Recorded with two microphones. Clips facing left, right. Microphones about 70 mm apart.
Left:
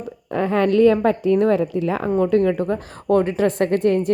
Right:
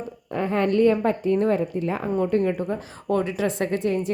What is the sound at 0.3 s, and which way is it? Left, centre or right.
A woman's voice, left.